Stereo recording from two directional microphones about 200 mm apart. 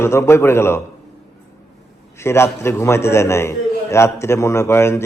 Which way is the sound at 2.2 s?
10° left (ahead or behind).